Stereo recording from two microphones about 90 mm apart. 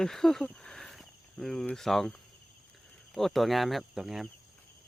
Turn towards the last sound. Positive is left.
turn(degrees=-5)  # may be behind; listen again after turning